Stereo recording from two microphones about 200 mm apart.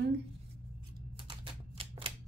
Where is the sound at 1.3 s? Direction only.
25° right (ahead or behind).